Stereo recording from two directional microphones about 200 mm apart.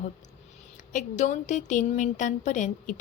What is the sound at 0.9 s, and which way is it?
A woman's voice, 40° left (ahead or behind).